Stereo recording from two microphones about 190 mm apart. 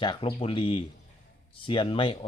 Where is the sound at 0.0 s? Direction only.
25° left (ahead or behind).